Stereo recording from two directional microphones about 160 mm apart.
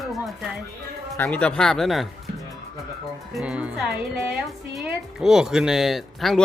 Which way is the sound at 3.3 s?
5° right (ahead or behind).